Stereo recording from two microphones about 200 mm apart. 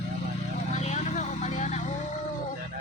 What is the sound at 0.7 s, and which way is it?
Vehicle, 35° left (ahead or behind).